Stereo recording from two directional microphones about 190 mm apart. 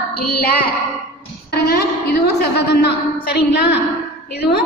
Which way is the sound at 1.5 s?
60° left (ahead or behind).